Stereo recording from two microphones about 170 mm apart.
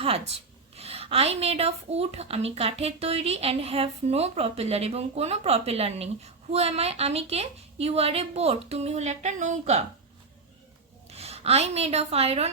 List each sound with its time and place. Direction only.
0.8 s a woman's voice: 35° right (ahead or behind)
11.1 s a woman's voice: 35° right (ahead or behind)